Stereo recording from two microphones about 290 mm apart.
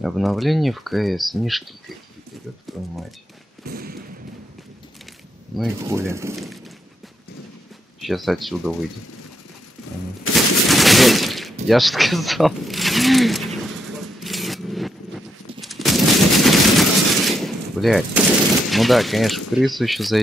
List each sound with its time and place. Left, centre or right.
0.0 s speech: centre
3.6 s thump: right
5.6 s speech: centre
8.0 s speech: centre
10.3 s fusillade: centre
11.6 s speech: centre
14.2 s a sound: centre
15.6 s gunshot: centre
18.7 s speech: centre